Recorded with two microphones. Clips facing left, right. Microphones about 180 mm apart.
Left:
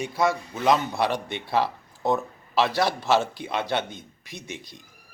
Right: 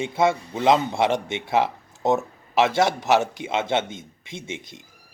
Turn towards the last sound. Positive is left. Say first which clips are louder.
# right 4 dB
turn(degrees=-20)  # may be behind; listen again after turning